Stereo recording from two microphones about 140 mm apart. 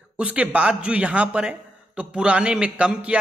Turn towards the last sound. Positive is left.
turn(degrees=-10)  # may be behind; listen again after turning